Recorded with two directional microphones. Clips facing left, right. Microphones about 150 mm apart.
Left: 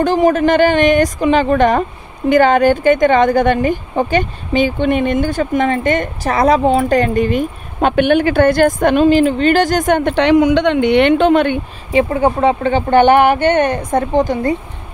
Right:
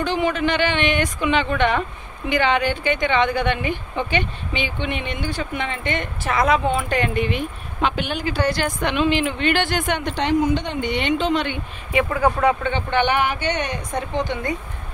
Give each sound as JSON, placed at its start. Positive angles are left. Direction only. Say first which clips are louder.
{"t": 0.0, "sound": "speech", "louder": "left 9 dB", "side_deg": 45}
{"t": 10.1, "sound": "speech", "louder": "left 8 dB", "side_deg": 75}
{"t": 11.9, "sound": "speech", "louder": "left 6 dB", "side_deg": 30}